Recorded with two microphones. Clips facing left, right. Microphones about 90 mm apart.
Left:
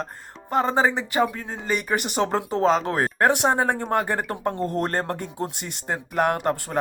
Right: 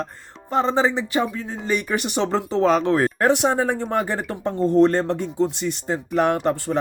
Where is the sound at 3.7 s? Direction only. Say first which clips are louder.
Right 1 dB; 50° left (ahead or behind).